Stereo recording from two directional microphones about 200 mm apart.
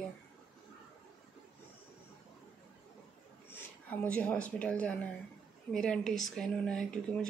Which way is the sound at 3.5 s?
10° left (ahead or behind).